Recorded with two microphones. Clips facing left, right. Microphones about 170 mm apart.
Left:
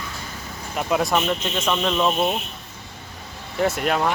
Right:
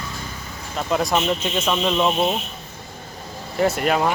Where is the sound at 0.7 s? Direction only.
5° left (ahead or behind).